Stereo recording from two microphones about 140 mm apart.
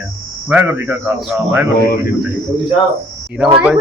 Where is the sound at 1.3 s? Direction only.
5° right (ahead or behind).